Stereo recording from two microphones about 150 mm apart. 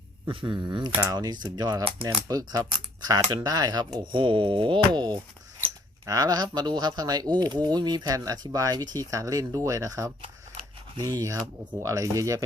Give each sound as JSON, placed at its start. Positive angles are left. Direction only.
{"t": 0.3, "sound": "speech", "side_deg": -30}